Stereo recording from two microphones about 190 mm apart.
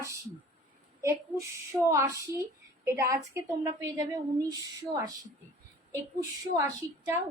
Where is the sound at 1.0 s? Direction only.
15° right (ahead or behind).